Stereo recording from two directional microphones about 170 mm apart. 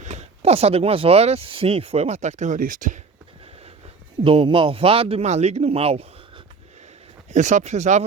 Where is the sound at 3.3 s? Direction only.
35° right (ahead or behind).